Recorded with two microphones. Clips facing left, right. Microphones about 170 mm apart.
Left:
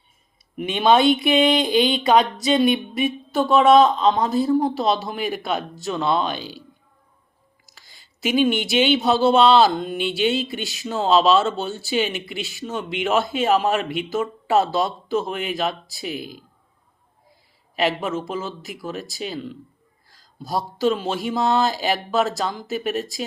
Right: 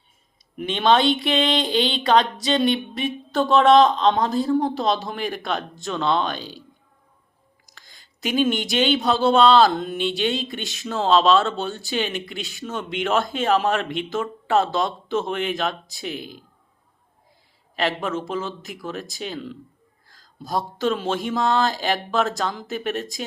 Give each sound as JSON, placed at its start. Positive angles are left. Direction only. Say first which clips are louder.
{"t": 0.5, "sound": "speech", "louder": "left 2 dB", "side_deg": 10}
{"t": 7.7, "sound": "a sound", "louder": "right 1 dB", "side_deg": 5}
{"t": 8.6, "sound": "speech", "louder": "left 2 dB", "side_deg": 5}
{"t": 17.7, "sound": "speech", "louder": "left 2 dB", "side_deg": 5}